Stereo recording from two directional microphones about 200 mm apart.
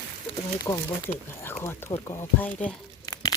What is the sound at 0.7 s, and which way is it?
Speech, 15° left (ahead or behind).